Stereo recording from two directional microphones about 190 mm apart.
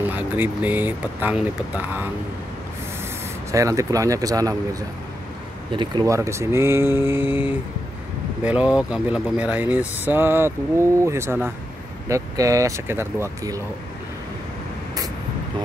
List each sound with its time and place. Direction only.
0.0 s speech: 10° right (ahead or behind)
3.5 s speech: 15° right (ahead or behind)
5.7 s speech: 25° right (ahead or behind)